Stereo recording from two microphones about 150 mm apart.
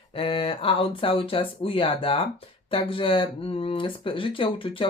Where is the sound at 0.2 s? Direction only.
40° left (ahead or behind).